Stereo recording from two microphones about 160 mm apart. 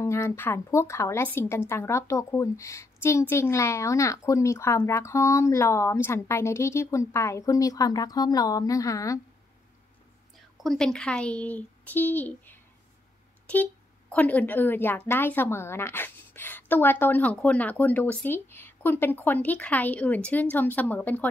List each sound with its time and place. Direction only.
0.0 s a woman's voice: 15° left (ahead or behind)
10.6 s speech: 5° left (ahead or behind)